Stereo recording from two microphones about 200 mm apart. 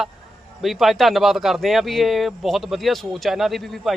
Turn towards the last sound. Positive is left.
turn(degrees=0)  # may be behind; listen again after turning